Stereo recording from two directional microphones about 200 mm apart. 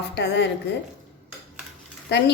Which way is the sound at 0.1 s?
60° left (ahead or behind).